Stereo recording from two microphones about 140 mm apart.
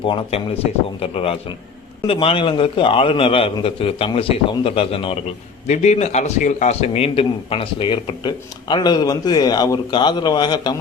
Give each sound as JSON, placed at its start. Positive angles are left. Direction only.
{"t": 0.0, "sound": "a man's voice", "side_deg": 40}
{"t": 5.6, "sound": "a man's voice", "side_deg": 55}